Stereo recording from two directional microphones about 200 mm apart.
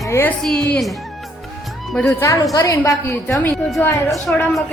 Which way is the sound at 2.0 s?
15° left (ahead or behind).